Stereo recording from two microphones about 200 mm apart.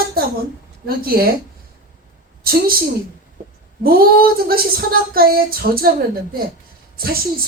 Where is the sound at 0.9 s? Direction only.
50° right (ahead or behind).